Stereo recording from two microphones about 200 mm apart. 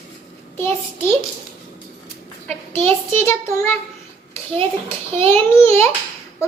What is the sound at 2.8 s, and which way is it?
Speech, 10° left (ahead or behind).